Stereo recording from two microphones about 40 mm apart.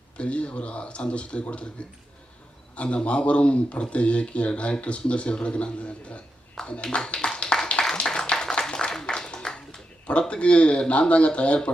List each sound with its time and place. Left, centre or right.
0.2 s speech: left
2.7 s speech: left
7.4 s a sound: centre
10.1 s speech: left